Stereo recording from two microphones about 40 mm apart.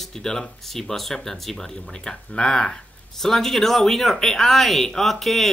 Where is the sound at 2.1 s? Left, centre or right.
Centre.